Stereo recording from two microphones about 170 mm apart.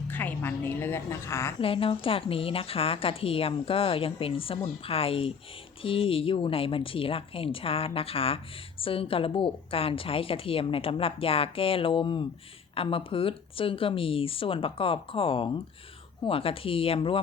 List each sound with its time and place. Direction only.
0.1 s a woman's voice: 10° left (ahead or behind)
1.6 s a woman's voice: 30° left (ahead or behind)